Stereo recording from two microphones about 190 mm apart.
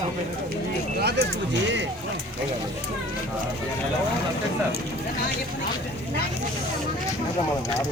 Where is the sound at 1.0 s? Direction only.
55° right (ahead or behind).